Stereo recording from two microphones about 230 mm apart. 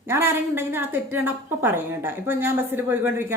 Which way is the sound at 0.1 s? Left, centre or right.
Centre.